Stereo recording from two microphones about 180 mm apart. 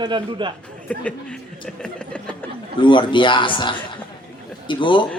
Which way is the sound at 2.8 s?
25° left (ahead or behind).